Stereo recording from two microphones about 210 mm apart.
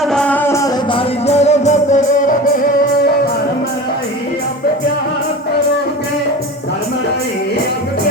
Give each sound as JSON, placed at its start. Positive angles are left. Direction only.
{"t": 0.0, "sound": "music", "side_deg": 5}
{"t": 0.9, "sound": "music", "side_deg": 30}